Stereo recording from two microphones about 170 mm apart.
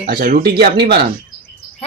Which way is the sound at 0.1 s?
55° right (ahead or behind).